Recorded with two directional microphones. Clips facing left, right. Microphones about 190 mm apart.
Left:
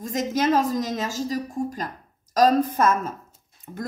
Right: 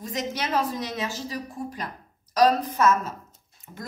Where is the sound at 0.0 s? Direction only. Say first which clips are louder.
Left 7 dB; 45° left (ahead or behind).